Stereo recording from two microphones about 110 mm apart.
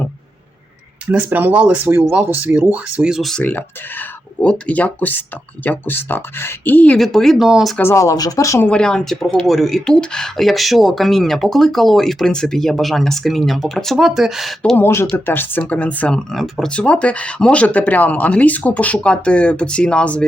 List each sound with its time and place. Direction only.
1.1 s speech: 15° right (ahead or behind); by 3.4 s centre (ahead or behind)
3.4 s speech: 15° left (ahead or behind)
6.9 s speech: 5° left (ahead or behind)
7.8 s speech: 25° left (ahead or behind)
8.6 s speech: 10° left (ahead or behind)
14.8 s speech: 20° left (ahead or behind)